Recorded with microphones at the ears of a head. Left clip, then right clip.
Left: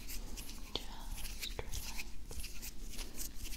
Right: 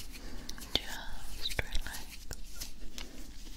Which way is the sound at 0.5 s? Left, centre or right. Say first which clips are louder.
Right 10 dB; right.